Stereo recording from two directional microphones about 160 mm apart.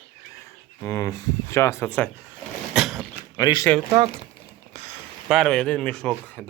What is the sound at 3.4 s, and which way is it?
Speech, 25° left (ahead or behind).